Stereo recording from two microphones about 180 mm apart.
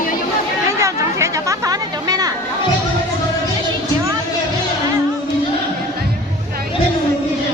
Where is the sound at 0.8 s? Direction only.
15° right (ahead or behind).